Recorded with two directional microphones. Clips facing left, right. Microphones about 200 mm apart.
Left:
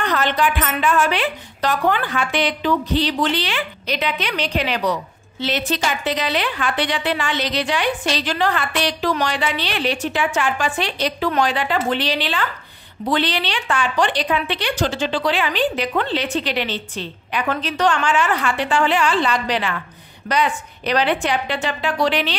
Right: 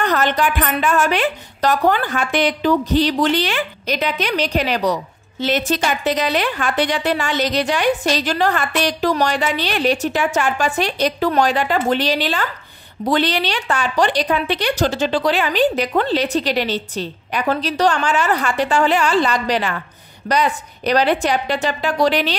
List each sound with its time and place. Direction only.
0.0 s a woman's voice: 45° right (ahead or behind)